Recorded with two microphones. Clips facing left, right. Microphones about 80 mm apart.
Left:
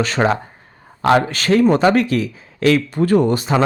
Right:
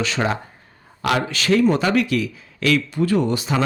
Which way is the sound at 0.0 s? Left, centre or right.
Left.